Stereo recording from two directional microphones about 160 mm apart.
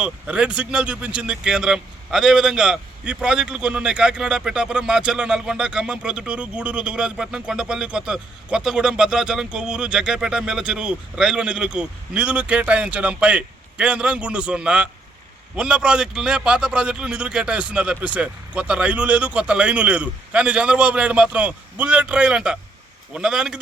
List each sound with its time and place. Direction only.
0.0 s a man's voice: 5° right (ahead or behind)